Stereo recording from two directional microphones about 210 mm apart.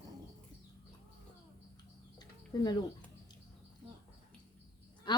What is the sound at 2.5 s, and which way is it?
Speech, 20° left (ahead or behind).